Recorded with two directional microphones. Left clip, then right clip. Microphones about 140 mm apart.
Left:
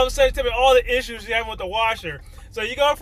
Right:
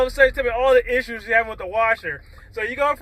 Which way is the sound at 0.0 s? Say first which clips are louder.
Right 1 dB; 15° left (ahead or behind).